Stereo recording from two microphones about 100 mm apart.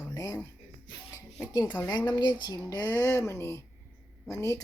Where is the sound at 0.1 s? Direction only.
35° left (ahead or behind).